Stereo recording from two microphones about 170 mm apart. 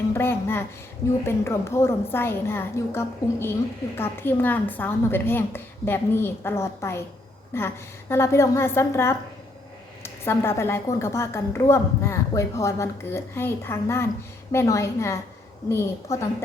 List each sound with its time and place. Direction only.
0.1 s a woman's voice: 15° left (ahead or behind)